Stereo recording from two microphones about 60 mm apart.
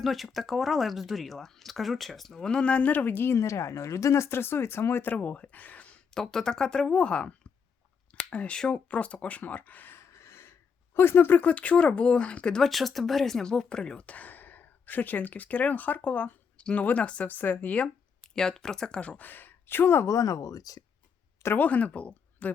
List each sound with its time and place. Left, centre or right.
0.0 s speech: centre; by 3.3 s left
3.3 s speech: left
5.1 s speech: left
8.1 s a sound: left
8.5 s speech: centre
12.7 s speech: centre; by 17.2 s left
17.2 s speech: left
18.2 s speech: centre; by 20.1 s left
20.1 s speech: left
21.6 s speech: left